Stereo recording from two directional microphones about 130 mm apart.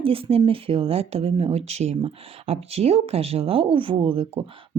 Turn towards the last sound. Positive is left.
turn(degrees=-45)  # may be behind; listen again after turning